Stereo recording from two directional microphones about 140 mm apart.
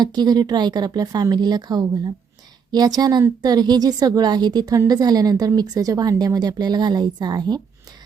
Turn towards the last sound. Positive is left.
turn(degrees=-30)  # may be behind; listen again after turning